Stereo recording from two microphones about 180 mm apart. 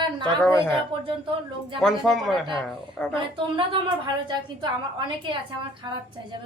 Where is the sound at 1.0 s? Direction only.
30° right (ahead or behind).